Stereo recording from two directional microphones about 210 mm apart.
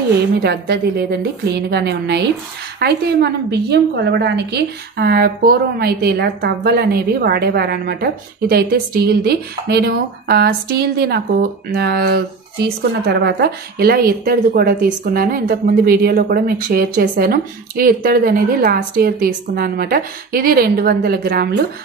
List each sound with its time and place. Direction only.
0.4 s a woman's voice: 50° right (ahead or behind)